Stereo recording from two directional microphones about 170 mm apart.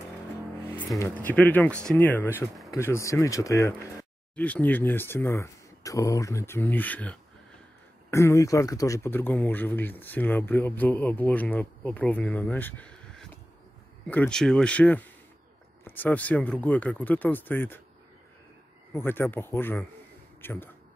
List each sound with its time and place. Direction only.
1.1 s speech: 10° left (ahead or behind)
18.9 s speech: 10° left (ahead or behind)